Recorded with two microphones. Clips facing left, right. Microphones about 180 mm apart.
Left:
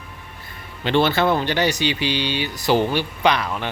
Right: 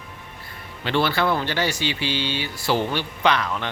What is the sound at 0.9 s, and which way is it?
Speech, 20° left (ahead or behind).